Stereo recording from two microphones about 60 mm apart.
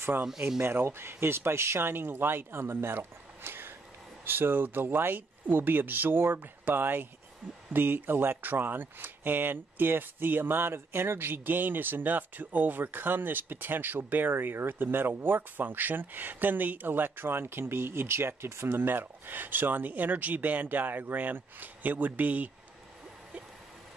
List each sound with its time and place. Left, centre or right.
0.6 s speech: right